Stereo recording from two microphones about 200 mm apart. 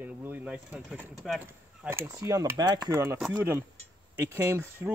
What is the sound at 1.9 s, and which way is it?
Speech, 15° right (ahead or behind).